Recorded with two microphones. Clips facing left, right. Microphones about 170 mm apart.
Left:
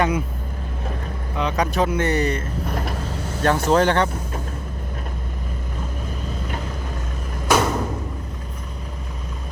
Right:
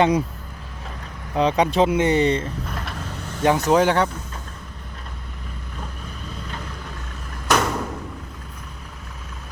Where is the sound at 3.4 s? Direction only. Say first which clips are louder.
Right 1 dB; 15° right (ahead or behind).